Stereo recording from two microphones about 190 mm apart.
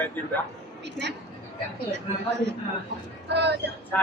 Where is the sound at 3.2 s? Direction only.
60° right (ahead or behind).